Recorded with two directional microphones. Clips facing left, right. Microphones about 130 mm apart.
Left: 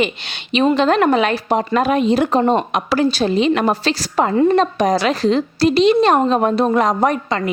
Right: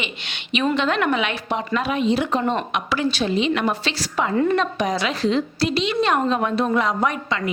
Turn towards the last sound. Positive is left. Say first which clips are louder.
# left 5 dB
turn(degrees=40)  # may be behind; listen again after turning